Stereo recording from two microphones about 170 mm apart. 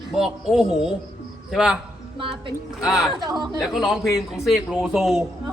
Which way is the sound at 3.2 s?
25° right (ahead or behind).